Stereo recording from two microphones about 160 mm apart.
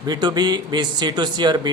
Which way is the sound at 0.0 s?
25° right (ahead or behind).